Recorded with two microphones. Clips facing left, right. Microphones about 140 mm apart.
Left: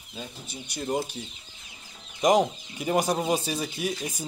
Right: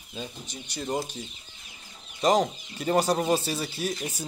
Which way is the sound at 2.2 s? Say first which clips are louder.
Left 1 dB; 10° left (ahead or behind).